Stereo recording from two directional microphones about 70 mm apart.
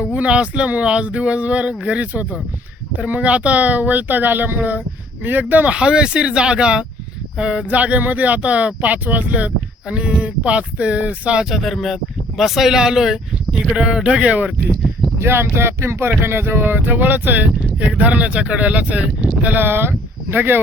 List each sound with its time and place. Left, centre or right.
0.0 s speech: centre
11.4 s speech: centre
15.2 s speech: right